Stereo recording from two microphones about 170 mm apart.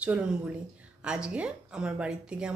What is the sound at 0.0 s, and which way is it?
A woman's voice, 10° right (ahead or behind).